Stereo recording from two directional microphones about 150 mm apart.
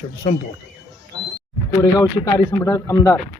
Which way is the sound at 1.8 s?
25° left (ahead or behind).